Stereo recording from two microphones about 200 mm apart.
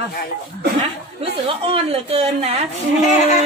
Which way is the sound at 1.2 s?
30° right (ahead or behind).